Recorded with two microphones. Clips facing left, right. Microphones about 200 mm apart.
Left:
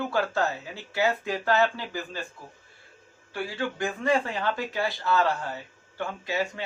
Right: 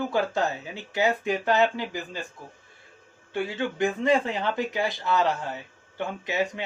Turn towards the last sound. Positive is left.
turn(degrees=-20)  # may be behind; listen again after turning